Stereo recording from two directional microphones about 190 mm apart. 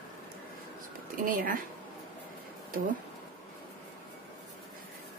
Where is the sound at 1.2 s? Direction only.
45° right (ahead or behind).